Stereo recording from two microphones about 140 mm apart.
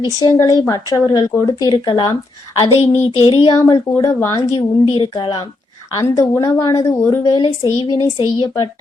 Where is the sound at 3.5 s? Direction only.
25° left (ahead or behind).